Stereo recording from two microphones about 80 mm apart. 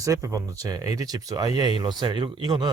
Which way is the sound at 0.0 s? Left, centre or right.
Right.